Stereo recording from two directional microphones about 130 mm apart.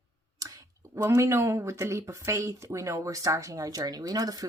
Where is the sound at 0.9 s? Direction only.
20° right (ahead or behind).